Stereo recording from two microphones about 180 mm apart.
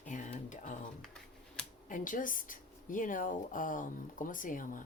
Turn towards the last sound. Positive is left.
turn(degrees=50)  # may be behind; listen again after turning